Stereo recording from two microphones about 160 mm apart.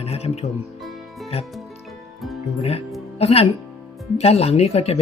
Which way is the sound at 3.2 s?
40° left (ahead or behind).